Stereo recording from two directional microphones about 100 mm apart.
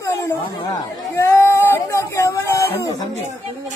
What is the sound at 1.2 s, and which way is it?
Speech, 25° left (ahead or behind).